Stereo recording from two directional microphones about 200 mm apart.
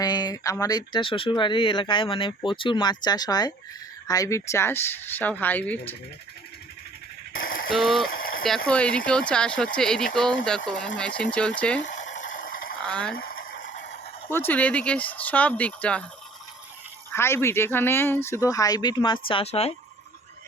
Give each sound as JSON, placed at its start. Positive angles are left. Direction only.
{"t": 0.0, "sound": "speech", "side_deg": 20}
{"t": 7.4, "sound": "mechanisms", "side_deg": 45}
{"t": 7.7, "sound": "speech", "side_deg": 0}
{"t": 8.1, "sound": "a sound", "side_deg": 45}
{"t": 8.4, "sound": "speech", "side_deg": 5}
{"t": 11.8, "sound": "a sound", "side_deg": 40}
{"t": 12.8, "sound": "speech", "side_deg": 5}
{"t": 13.1, "sound": "fowl", "side_deg": 45}
{"t": 14.3, "sound": "speech", "side_deg": 10}
{"t": 17.1, "sound": "speech", "side_deg": 10}